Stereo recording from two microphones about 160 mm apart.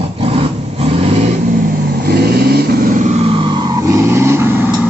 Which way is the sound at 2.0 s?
75° right (ahead or behind).